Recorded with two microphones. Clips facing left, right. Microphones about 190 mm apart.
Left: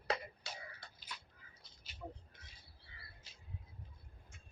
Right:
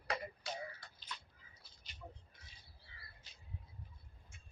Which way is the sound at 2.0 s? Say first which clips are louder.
Left 5 dB; 40° left (ahead or behind).